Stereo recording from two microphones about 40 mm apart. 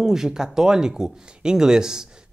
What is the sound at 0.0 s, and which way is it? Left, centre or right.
Speech, centre.